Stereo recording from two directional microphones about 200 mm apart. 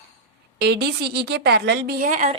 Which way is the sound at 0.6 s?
55° right (ahead or behind).